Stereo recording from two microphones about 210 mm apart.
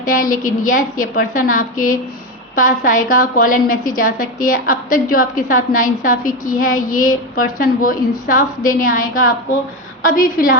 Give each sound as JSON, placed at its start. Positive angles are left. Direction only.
{"t": 0.1, "sound": "a woman's voice", "side_deg": 40}